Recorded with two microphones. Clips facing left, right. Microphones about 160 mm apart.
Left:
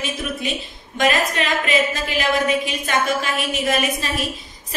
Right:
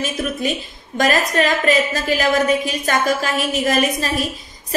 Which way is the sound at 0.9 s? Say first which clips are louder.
Right 2 dB; 40° right (ahead or behind).